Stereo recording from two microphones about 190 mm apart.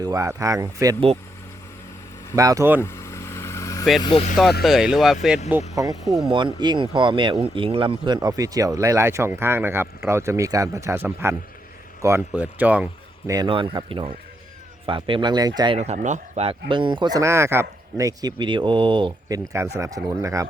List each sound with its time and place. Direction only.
0.0 s speech: 15° right (ahead or behind)
2.3 s speech: 20° right (ahead or behind)
2.8 s vehicle: 15° left (ahead or behind)
4.6 s speech: centre (ahead or behind)
5.7 s speech: 20° right (ahead or behind)
13.3 s speech: 25° right (ahead or behind)
15.8 s speech: 40° right (ahead or behind); by 20.5 s 15° right (ahead or behind)